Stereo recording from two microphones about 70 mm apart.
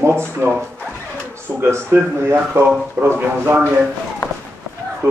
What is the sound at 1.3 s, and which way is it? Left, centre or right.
Speech, right.